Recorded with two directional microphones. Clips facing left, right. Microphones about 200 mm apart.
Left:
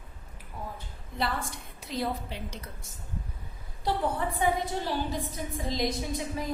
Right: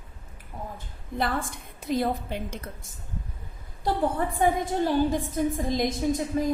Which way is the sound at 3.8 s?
50° right (ahead or behind).